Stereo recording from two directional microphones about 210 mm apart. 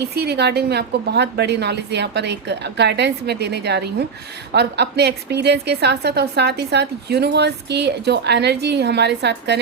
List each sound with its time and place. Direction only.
0.0 s a woman's voice: 50° right (ahead or behind)